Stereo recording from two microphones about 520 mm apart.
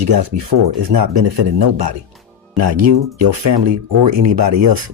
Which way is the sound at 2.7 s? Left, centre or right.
Right.